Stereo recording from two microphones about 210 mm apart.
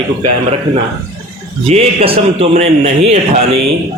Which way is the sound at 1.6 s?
30° right (ahead or behind).